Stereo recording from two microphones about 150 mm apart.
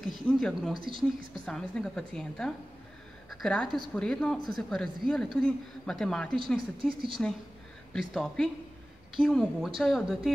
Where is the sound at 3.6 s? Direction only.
30° right (ahead or behind).